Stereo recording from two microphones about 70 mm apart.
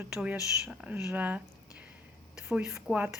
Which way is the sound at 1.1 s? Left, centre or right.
Right.